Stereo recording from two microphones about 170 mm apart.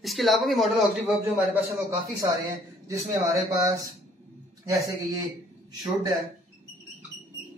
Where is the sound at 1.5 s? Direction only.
15° right (ahead or behind).